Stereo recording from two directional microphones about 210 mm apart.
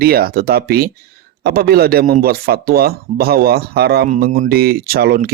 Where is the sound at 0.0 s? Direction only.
45° right (ahead or behind).